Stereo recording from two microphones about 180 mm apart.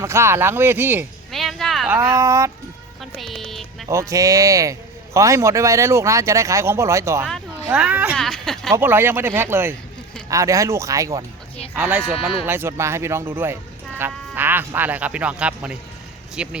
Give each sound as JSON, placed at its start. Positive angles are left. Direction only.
{"t": 0.0, "sound": "a man's voice", "side_deg": -15}
{"t": 1.3, "sound": "a sound", "side_deg": 0}
{"t": 1.9, "sound": "a man's voice", "side_deg": -15}
{"t": 3.2, "sound": "music", "side_deg": 0}
{"t": 3.8, "sound": "a man's voice", "side_deg": -15}
{"t": 8.1, "sound": "speech", "side_deg": 5}
{"t": 8.7, "sound": "a man's voice", "side_deg": -10}